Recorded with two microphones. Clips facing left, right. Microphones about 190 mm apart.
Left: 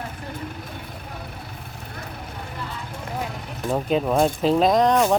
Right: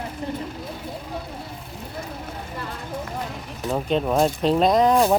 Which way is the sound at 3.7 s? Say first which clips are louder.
Left 1 dB; centre (ahead or behind).